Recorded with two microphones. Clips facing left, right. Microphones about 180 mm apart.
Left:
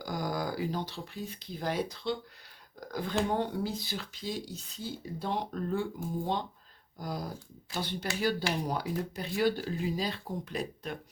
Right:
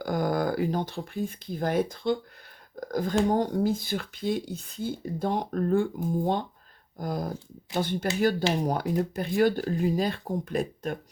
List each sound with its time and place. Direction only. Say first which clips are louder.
0.0 s speech: right 7 dB; 55° right (ahead or behind)